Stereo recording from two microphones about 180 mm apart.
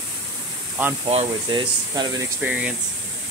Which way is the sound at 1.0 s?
30° right (ahead or behind).